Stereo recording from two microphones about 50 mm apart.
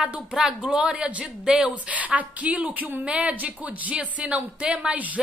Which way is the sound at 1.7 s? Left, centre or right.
Right.